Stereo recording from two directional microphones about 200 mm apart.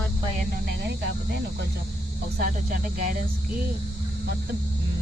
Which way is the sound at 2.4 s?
45° right (ahead or behind).